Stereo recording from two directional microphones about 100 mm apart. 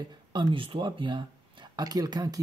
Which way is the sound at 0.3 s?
55° right (ahead or behind).